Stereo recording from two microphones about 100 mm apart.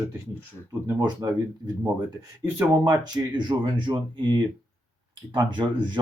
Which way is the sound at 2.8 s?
40° right (ahead or behind).